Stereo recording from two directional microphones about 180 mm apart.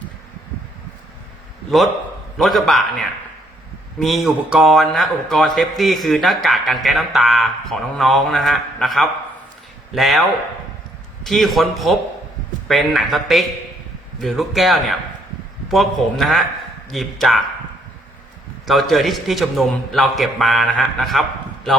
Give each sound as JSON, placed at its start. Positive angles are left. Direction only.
{"t": 2.4, "sound": "speech", "side_deg": 0}
{"t": 18.6, "sound": "speech", "side_deg": 0}